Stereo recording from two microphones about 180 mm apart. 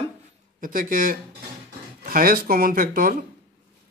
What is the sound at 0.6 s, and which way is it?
A man's voice, 50° right (ahead or behind).